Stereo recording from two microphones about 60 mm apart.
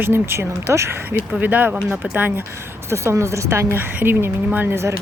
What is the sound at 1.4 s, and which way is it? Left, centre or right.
Speech, right.